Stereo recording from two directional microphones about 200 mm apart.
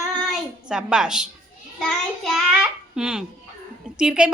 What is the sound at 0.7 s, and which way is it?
A woman's voice, 5° right (ahead or behind).